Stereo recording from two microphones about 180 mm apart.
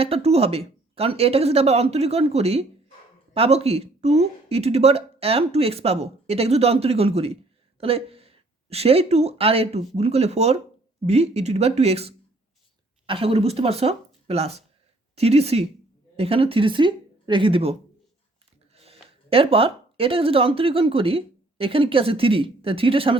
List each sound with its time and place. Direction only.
0.0 s speech: 35° right (ahead or behind)